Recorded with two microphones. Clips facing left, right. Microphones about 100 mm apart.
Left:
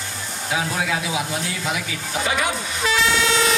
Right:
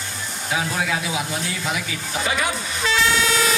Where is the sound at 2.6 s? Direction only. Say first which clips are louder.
Left 1 dB; 35° right (ahead or behind).